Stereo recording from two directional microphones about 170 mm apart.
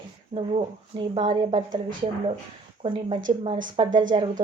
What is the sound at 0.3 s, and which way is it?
Speech, 35° right (ahead or behind).